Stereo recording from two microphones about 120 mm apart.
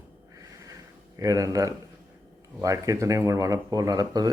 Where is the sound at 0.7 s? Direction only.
30° right (ahead or behind).